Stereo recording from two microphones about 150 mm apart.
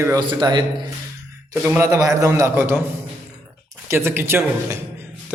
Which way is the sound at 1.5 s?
20° right (ahead or behind).